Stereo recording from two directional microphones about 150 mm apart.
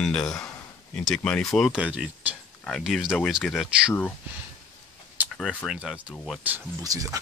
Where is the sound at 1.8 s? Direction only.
10° right (ahead or behind).